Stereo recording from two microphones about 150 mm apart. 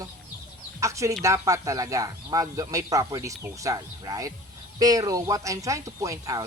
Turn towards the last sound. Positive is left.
turn(degrees=-25)  # may be behind; listen again after turning